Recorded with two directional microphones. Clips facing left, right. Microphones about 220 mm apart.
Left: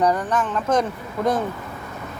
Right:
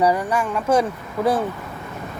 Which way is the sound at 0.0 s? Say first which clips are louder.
Right 1 dB; 10° right (ahead or behind).